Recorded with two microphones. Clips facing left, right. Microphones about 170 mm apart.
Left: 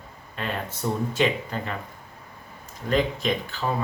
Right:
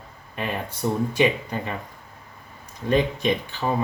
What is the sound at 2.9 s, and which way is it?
Speech, 20° right (ahead or behind).